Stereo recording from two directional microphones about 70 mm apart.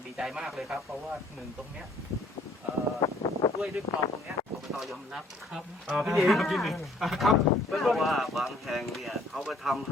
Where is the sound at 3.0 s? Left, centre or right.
Left.